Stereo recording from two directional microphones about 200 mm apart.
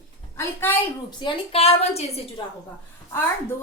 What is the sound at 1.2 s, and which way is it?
Speech, 30° left (ahead or behind).